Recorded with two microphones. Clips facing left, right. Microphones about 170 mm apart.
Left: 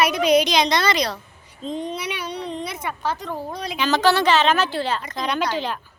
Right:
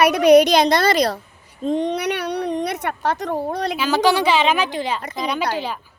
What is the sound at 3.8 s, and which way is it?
A woman's voice, 10° right (ahead or behind).